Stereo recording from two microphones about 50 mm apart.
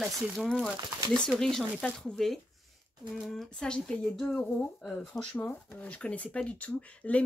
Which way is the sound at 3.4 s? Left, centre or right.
Centre.